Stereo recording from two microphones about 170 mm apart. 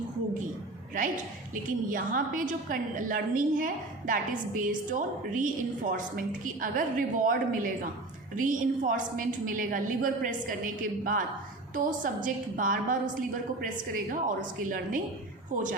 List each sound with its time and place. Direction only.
0.9 s a woman's voice: 50° right (ahead or behind)